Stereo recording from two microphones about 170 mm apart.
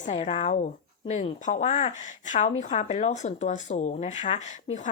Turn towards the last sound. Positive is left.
turn(degrees=45)  # may be behind; listen again after turning